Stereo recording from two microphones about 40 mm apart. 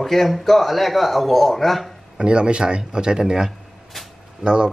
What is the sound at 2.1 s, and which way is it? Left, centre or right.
A man's voice, right.